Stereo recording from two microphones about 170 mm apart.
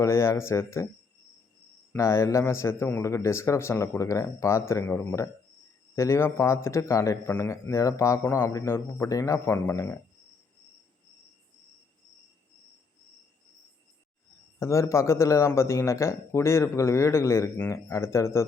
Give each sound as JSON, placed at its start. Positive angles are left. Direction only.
{"t": 0.0, "sound": "speech", "side_deg": 15}
{"t": 1.9, "sound": "speech", "side_deg": 15}
{"t": 14.6, "sound": "speech", "side_deg": 15}